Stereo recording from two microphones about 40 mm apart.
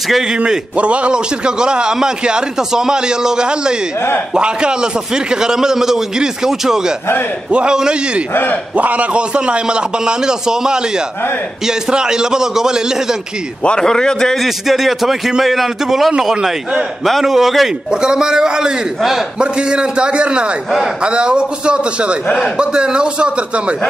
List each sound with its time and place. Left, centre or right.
0.7 s a man's voice: right
8.7 s a man's voice: right; by 12.8 s centre
13.7 s a man's voice: centre
14.3 s a man's voice: centre
18.0 s a man's voice: centre